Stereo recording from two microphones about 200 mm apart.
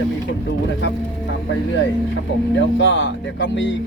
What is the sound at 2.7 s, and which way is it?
Speech, 70° left (ahead or behind).